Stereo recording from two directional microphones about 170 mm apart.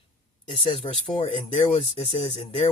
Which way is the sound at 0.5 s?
35° left (ahead or behind).